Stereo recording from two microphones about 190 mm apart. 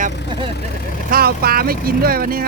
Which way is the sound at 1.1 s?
55° right (ahead or behind).